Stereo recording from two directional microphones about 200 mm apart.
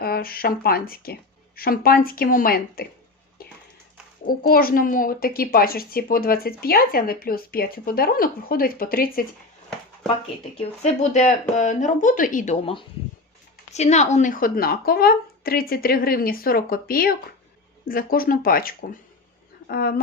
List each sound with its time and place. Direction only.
0.0 s speech: 50° left (ahead or behind)
4.3 s speech: 45° left (ahead or behind)
10.6 s speech: 35° left (ahead or behind)